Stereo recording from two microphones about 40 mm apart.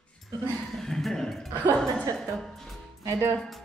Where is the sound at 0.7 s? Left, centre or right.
Centre.